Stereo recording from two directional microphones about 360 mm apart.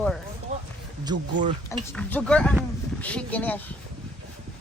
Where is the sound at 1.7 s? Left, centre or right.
Centre.